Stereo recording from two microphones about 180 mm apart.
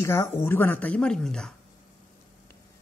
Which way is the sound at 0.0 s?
15° left (ahead or behind).